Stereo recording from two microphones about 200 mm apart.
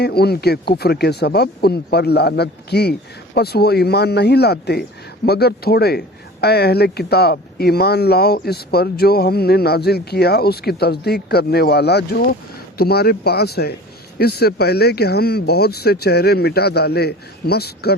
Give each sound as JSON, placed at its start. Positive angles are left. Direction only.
{"t": 0.0, "sound": "speech", "side_deg": 55}